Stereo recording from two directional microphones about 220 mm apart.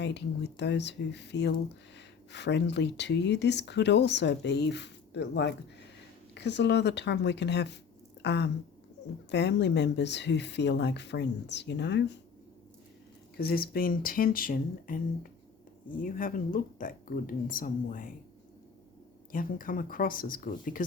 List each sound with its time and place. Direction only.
0.0 s speech: 50° left (ahead or behind)
13.3 s speech: 45° left (ahead or behind)
19.3 s speech: 40° left (ahead or behind)